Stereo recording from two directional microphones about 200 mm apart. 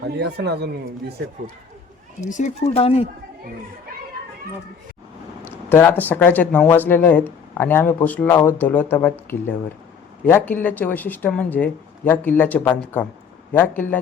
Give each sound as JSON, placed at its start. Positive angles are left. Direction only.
{"t": 0.0, "sound": "speech", "side_deg": -55}
{"t": 2.2, "sound": "speech", "side_deg": 40}
{"t": 5.5, "sound": "speech", "side_deg": 10}